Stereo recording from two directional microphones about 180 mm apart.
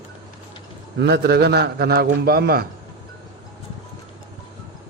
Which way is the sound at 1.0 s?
65° right (ahead or behind).